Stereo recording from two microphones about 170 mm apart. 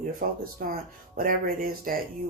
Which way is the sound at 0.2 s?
55° right (ahead or behind).